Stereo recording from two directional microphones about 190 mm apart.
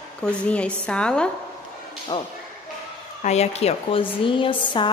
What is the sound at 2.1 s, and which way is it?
Speech, 25° left (ahead or behind).